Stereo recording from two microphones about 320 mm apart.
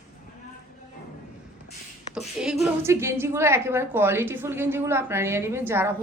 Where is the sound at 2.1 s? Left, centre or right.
Centre.